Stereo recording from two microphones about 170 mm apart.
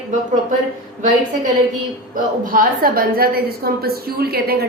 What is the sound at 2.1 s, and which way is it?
A woman's voice, 55° right (ahead or behind).